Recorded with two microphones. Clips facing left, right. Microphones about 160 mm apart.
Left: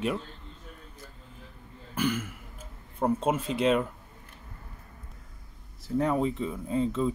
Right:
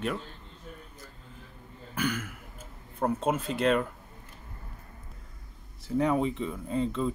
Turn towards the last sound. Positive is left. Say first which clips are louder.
# left 2 dB
turn(degrees=5)  # may be behind; listen again after turning